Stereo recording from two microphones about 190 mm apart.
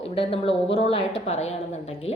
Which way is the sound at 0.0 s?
30° left (ahead or behind).